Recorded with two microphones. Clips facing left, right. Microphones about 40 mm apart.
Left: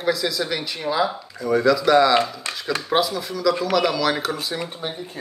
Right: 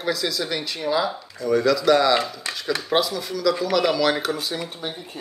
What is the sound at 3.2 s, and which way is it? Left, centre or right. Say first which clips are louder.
Speech: left 1 dB; centre.